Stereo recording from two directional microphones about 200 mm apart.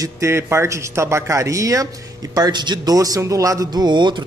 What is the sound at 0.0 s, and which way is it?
A man's voice, 15° right (ahead or behind).